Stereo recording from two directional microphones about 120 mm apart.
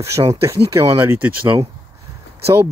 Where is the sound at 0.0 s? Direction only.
25° right (ahead or behind).